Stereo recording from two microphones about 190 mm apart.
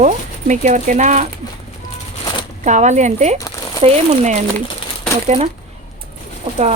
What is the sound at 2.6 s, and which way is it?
A woman's voice, 40° right (ahead or behind).